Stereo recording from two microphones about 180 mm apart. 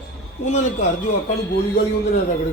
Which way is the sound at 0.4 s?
40° left (ahead or behind).